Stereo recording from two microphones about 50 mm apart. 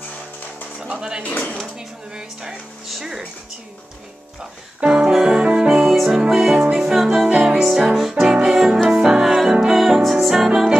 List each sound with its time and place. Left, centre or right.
0.7 s speech: centre
2.9 s speech: centre
4.8 s speech: centre
5.1 s music: centre
6.2 s speech: centre
6.7 s music: centre
8.2 s music: centre
8.5 s music: centre